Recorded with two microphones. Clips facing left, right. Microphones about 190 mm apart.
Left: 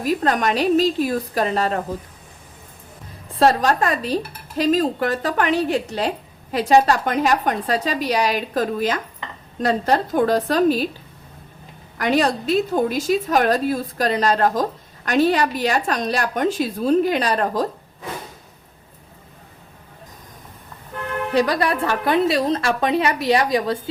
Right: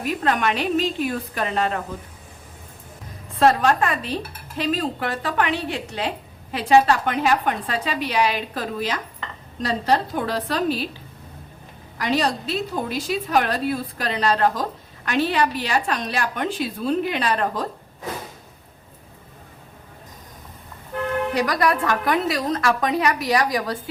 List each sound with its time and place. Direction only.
0.0 s speech: 40° left (ahead or behind)
3.3 s a woman's voice: 35° left (ahead or behind)
11.9 s a woman's voice: 50° left (ahead or behind)
21.3 s a woman's voice: 30° left (ahead or behind)